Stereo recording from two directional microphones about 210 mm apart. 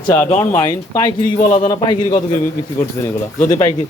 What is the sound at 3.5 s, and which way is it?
Speech, 15° left (ahead or behind).